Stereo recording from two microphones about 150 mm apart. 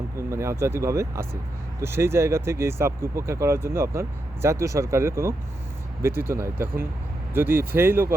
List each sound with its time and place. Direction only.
0.2 s speech: 20° right (ahead or behind)